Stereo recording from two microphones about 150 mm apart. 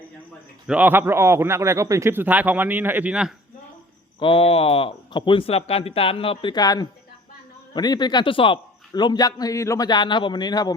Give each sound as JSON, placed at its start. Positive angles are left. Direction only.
{"t": 0.7, "sound": "a man's voice", "side_deg": -10}
{"t": 4.2, "sound": "a man's voice", "side_deg": 35}